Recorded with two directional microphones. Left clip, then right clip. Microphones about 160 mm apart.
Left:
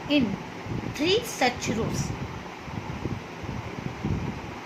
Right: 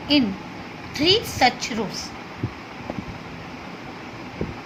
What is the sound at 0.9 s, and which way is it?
A woman's voice, 15° right (ahead or behind).